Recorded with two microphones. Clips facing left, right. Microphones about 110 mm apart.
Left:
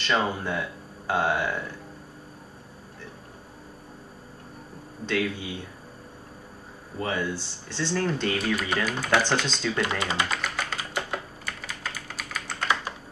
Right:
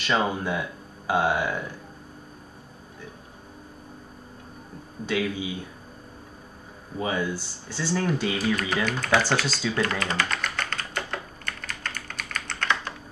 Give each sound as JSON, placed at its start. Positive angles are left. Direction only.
{"t": 0.0, "sound": "speech", "side_deg": -10}
{"t": 5.0, "sound": "speech", "side_deg": -5}
{"t": 7.0, "sound": "speech", "side_deg": -5}
{"t": 8.8, "sound": "speech", "side_deg": 5}
{"t": 9.8, "sound": "speech", "side_deg": 15}
{"t": 10.3, "sound": "typing", "side_deg": 5}